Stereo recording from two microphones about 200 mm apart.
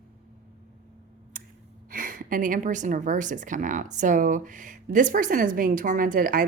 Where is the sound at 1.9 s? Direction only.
45° right (ahead or behind).